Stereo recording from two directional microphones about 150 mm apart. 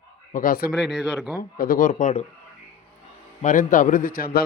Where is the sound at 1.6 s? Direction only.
65° left (ahead or behind).